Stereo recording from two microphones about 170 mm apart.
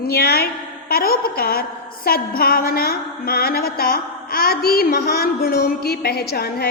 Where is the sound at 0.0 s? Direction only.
65° left (ahead or behind).